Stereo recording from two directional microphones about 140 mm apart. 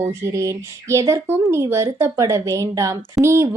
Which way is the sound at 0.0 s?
20° right (ahead or behind).